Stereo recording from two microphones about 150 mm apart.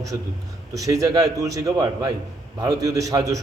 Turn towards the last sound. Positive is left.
turn(degrees=-25)  # may be behind; listen again after turning